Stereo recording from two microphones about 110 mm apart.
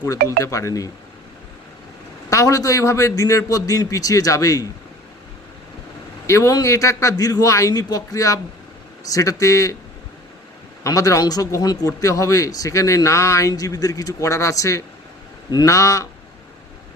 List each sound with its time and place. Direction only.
0.0 s speech: 30° left (ahead or behind)
2.3 s speech: 30° left (ahead or behind)
6.2 s speech: 30° left (ahead or behind)
10.8 s speech: 30° left (ahead or behind)